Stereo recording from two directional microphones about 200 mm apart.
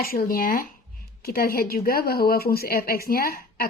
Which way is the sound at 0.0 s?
45° left (ahead or behind).